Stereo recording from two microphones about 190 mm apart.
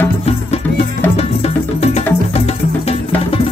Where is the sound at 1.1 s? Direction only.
35° left (ahead or behind).